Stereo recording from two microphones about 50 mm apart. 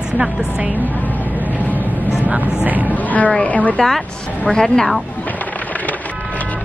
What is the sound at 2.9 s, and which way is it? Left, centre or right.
Speech, left.